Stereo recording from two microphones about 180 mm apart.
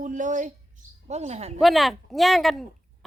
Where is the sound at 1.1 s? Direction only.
40° right (ahead or behind).